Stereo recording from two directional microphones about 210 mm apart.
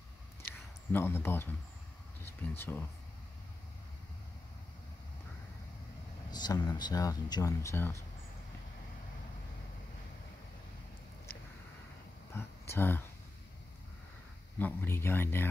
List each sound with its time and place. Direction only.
0.5 s a sound: 10° left (ahead or behind)
2.5 s speech: 10° left (ahead or behind)
6.3 s speech: 20° left (ahead or behind)
12.4 s speech: 10° left (ahead or behind)
14.6 s speech: 10° left (ahead or behind)